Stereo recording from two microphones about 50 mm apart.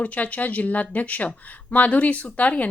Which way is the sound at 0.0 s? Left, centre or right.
Left.